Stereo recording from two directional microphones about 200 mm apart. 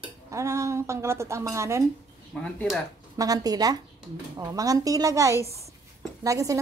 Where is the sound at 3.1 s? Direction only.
20° right (ahead or behind).